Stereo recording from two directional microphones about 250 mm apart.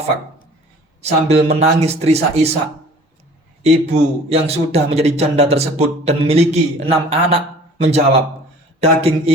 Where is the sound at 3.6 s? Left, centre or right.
Right.